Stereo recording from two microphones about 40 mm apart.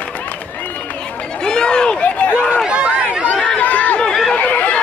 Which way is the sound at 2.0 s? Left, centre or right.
Left.